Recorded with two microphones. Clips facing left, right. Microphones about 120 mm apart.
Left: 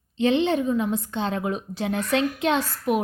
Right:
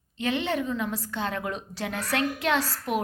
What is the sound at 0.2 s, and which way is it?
A woman's voice, 20° left (ahead or behind).